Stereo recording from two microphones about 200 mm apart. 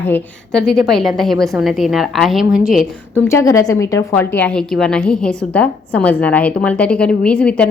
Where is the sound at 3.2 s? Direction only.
15° left (ahead or behind).